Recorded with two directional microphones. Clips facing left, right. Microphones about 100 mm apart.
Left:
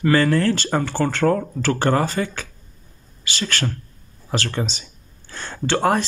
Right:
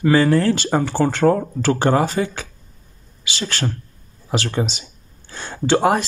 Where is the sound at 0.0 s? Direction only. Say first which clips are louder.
Right 2 dB; 15° right (ahead or behind).